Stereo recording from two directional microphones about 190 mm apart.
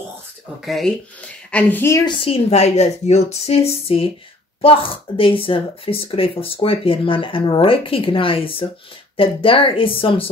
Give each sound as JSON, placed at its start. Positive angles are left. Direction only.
{"t": 0.7, "sound": "speech", "side_deg": 0}
{"t": 2.0, "sound": "a woman's voice", "side_deg": 30}